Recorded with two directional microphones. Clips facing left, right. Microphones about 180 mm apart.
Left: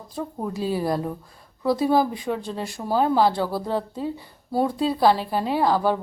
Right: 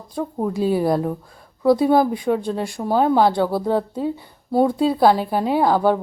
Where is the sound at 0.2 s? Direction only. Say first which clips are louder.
Right 6 dB; 25° right (ahead or behind).